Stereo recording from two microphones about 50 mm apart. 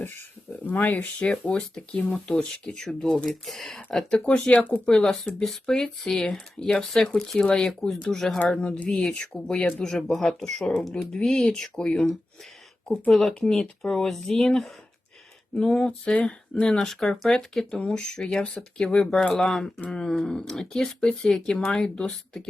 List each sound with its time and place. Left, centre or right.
0.6 s speech: left
1.2 s speech: left
1.5 s speech: centre
2.0 s speech: left; by 3.8 s centre
3.8 s speech: centre
5.0 s speech: centre
8.4 s speech: left
9.8 s speech: centre
13.1 s speech: centre
15.5 s speech: left